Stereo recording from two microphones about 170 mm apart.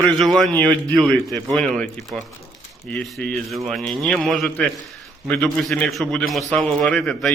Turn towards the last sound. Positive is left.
turn(degrees=5)  # may be behind; listen again after turning